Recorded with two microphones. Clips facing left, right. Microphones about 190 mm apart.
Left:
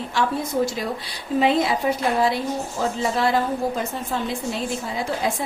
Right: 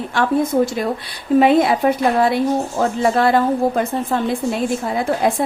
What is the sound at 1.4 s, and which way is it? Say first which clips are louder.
A woman's voice: right 5 dB; 55° right (ahead or behind).